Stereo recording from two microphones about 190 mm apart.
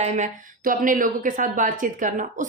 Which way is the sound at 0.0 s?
45° right (ahead or behind).